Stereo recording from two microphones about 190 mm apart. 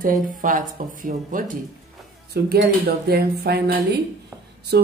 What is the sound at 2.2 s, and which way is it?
Speech, 55° right (ahead or behind).